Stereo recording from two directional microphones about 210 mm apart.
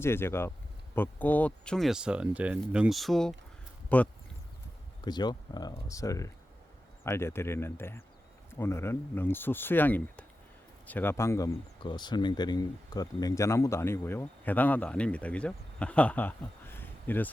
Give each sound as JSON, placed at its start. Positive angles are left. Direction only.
{"t": 0.0, "sound": "speech", "side_deg": 10}
{"t": 5.0, "sound": "speech", "side_deg": 20}